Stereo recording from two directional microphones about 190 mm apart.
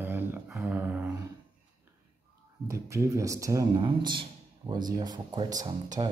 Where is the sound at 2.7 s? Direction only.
15° right (ahead or behind).